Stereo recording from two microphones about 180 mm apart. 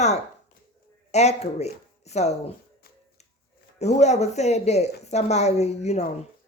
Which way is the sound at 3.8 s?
40° left (ahead or behind).